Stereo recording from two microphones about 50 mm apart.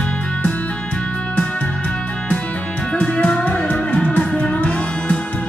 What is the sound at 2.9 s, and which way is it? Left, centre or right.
Music, left.